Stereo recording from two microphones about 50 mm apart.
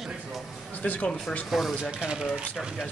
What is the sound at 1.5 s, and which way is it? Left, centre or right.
Speech, centre.